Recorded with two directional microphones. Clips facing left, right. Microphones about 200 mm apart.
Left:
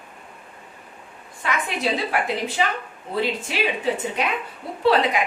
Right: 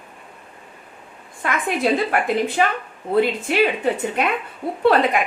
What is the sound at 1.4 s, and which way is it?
A woman's voice, 50° right (ahead or behind).